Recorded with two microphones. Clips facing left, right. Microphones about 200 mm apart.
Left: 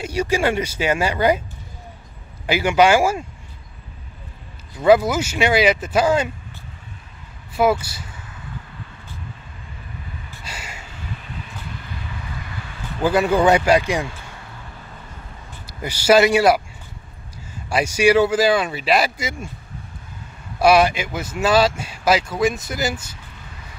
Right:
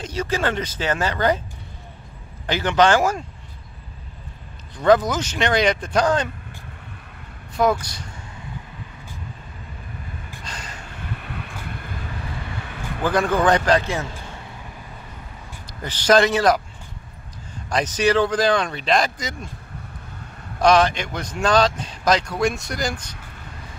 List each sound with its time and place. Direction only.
0.0 s a man's voice: 10° left (ahead or behind)
2.4 s a man's voice: 10° left (ahead or behind)
4.7 s a man's voice: 10° left (ahead or behind)
7.5 s a man's voice: 5° left (ahead or behind)
10.4 s gasp: 10° left (ahead or behind)
11.2 s vehicle: 60° right (ahead or behind)
13.0 s a man's voice: 10° left (ahead or behind)
15.6 s speech: 10° left (ahead or behind)
17.6 s a man's voice: 10° left (ahead or behind)
20.5 s a man's voice: 10° left (ahead or behind)